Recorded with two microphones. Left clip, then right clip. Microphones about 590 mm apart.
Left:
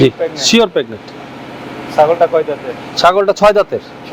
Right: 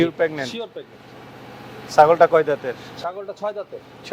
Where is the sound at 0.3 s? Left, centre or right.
Left.